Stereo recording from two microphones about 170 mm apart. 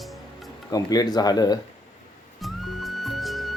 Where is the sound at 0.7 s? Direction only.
20° left (ahead or behind).